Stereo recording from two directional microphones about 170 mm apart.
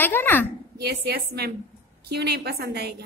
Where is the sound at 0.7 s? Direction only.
70° right (ahead or behind).